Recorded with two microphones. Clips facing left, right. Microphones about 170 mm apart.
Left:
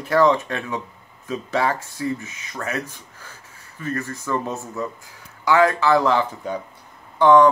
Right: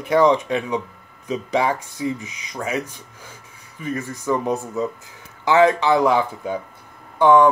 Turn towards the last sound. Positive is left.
turn(degrees=-10)  # may be behind; listen again after turning